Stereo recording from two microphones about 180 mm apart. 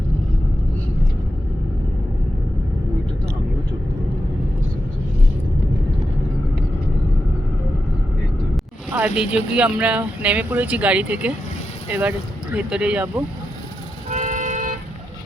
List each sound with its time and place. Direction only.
8.9 s speech: 10° right (ahead or behind)
14.1 s vehicle: 40° right (ahead or behind)